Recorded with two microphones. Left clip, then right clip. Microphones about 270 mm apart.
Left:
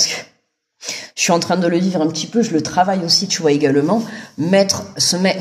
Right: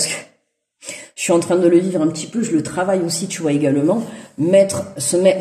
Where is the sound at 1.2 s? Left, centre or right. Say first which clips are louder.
Right 1 dB; left.